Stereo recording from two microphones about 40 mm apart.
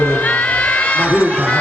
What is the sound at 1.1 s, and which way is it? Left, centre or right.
Speech, right.